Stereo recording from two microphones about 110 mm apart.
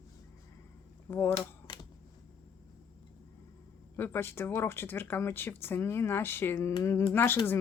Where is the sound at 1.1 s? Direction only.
20° left (ahead or behind).